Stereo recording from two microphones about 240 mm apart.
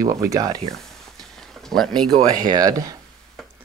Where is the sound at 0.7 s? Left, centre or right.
Centre.